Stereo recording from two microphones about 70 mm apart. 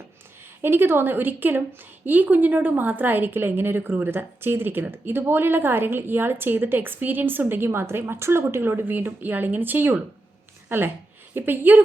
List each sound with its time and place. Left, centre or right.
0.6 s a woman's voice: right